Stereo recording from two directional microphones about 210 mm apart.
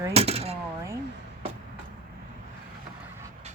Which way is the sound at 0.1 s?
30° right (ahead or behind).